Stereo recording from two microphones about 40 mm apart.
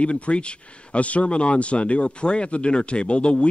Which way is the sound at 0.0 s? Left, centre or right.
Left.